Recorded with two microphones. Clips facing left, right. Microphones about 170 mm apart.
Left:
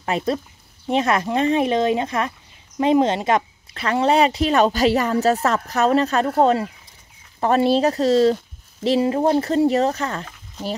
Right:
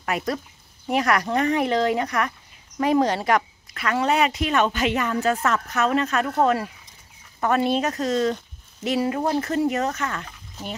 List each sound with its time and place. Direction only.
0.0 s speech: 25° left (ahead or behind)